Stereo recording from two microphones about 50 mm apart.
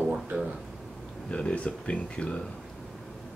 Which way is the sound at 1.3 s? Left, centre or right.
Left.